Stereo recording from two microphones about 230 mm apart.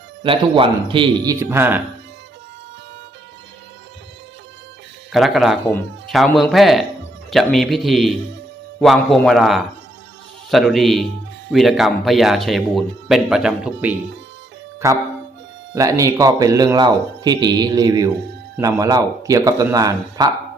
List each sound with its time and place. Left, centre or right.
0.2 s speech: right
5.1 s speech: centre